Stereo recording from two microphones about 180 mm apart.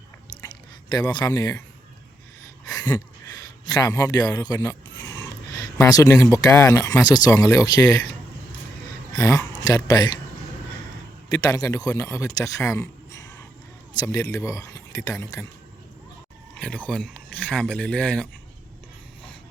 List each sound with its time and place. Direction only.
0.3 s chewing: 20° left (ahead or behind)
2.6 s speech: 20° left (ahead or behind)
9.1 s speech: 15° left (ahead or behind)
11.3 s speech: 20° left (ahead or behind)
16.6 s speech: 5° left (ahead or behind)